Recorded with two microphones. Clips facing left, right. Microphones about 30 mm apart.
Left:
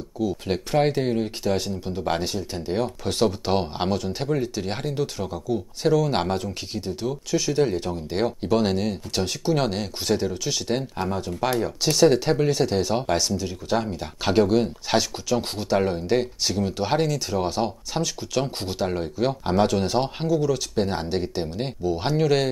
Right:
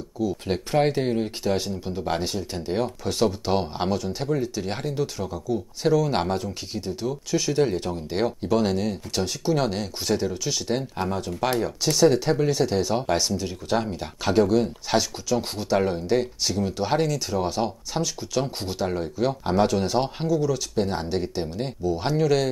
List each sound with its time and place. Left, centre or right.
0.5 s speech: centre
2.3 s speech: centre
3.0 s speech: centre
8.5 s speech: centre
11.4 s speech: centre
11.8 s speech: left
13.4 s speech: centre
14.2 s speech: left